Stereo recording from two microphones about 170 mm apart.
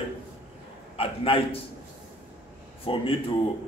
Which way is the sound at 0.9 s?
35° left (ahead or behind).